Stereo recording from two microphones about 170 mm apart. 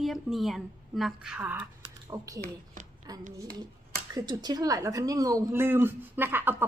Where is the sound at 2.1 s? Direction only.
20° right (ahead or behind).